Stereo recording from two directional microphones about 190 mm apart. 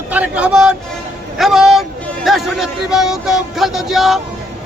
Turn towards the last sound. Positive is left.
turn(degrees=0)  # may be behind; listen again after turning